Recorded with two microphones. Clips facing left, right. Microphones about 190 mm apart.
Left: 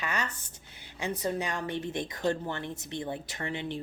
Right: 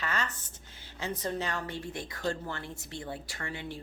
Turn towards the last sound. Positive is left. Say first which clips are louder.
# left 5 dB
turn(degrees=20)  # may be behind; listen again after turning